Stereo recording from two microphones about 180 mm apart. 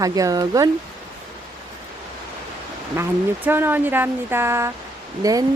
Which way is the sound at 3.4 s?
10° right (ahead or behind).